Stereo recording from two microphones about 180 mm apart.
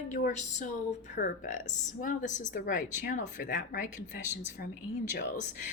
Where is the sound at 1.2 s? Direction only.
55° left (ahead or behind).